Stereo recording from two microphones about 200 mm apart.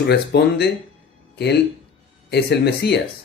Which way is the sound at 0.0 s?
55° left (ahead or behind).